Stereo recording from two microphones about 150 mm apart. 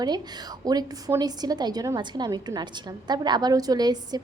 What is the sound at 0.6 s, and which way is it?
A woman's voice, 25° right (ahead or behind).